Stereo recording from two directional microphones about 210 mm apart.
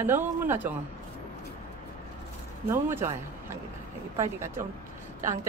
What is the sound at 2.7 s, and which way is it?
A man's voice, 10° right (ahead or behind).